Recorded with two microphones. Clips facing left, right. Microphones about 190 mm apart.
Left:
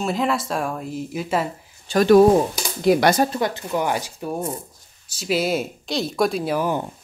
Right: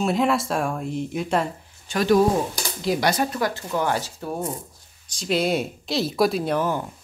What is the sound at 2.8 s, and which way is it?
Speech, 60° left (ahead or behind).